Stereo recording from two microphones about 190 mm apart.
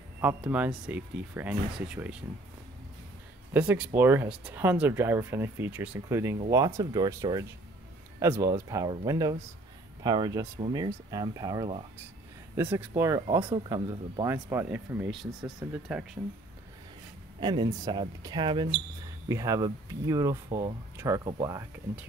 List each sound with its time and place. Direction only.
0.2 s speech: 10° right (ahead or behind)
3.5 s speech: 5° right (ahead or behind)
13.4 s speech: 25° right (ahead or behind); by 16.1 s 5° right (ahead or behind)
17.4 s speech: 25° right (ahead or behind)